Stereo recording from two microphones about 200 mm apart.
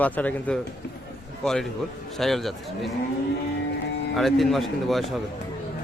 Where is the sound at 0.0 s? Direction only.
5° left (ahead or behind).